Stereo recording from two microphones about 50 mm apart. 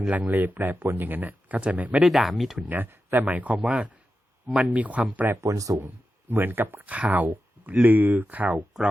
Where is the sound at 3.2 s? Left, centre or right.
Right.